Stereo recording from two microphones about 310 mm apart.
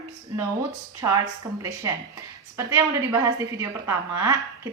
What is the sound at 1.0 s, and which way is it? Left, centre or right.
A woman's voice, centre.